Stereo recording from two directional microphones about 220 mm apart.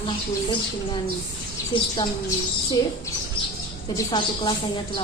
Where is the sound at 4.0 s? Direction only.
20° left (ahead or behind).